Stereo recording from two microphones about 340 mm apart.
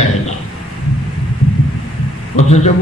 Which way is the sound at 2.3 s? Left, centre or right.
Centre.